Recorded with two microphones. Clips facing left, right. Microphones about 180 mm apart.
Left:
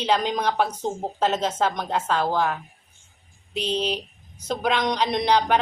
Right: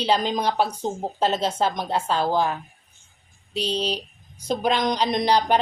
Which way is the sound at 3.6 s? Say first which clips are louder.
Even; 35° right (ahead or behind).